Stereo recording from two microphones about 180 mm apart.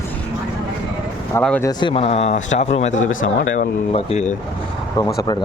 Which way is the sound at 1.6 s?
25° left (ahead or behind).